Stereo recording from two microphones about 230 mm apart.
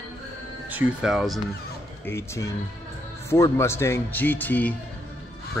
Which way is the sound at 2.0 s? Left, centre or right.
Centre.